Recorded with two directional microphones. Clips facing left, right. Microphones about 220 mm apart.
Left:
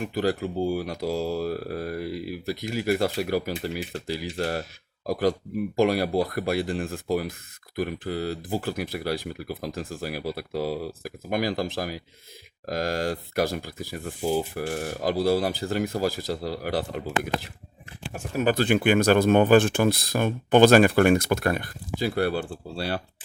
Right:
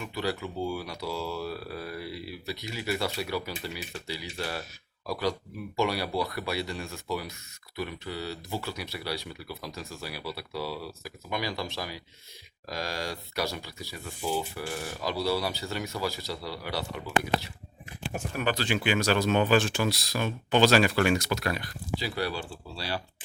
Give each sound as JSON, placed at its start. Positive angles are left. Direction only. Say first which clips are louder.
{"t": 0.0, "sound": "speech", "louder": "left 7 dB", "side_deg": 45}